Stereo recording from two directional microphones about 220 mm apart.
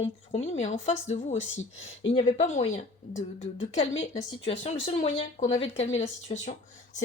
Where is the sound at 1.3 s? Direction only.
60° left (ahead or behind).